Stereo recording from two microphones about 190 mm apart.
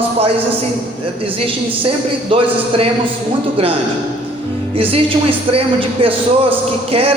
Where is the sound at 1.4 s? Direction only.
30° right (ahead or behind).